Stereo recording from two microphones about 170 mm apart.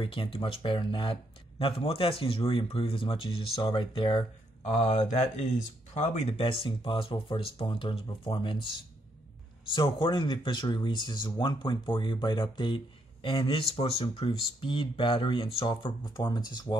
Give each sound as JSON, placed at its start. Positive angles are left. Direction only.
{"t": 0.0, "sound": "speech", "side_deg": 30}